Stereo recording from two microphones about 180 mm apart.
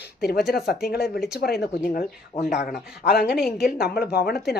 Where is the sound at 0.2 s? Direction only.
65° left (ahead or behind).